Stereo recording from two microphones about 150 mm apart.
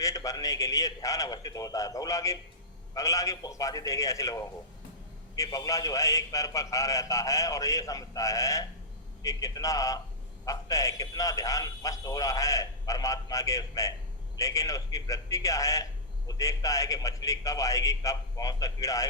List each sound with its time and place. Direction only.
0.0 s a man's voice: 20° left (ahead or behind)